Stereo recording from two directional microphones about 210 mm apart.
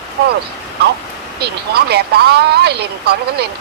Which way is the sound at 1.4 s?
50° right (ahead or behind).